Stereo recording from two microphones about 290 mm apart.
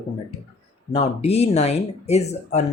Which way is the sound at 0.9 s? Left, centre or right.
Left.